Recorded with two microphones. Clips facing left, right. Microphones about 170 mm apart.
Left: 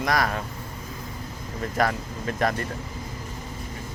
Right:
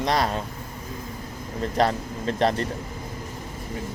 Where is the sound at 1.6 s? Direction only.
25° right (ahead or behind).